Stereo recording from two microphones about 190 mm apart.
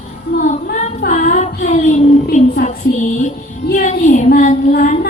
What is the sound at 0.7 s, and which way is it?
Child singing, 45° left (ahead or behind).